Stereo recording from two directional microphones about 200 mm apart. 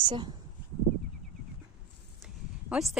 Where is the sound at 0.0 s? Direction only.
20° right (ahead or behind).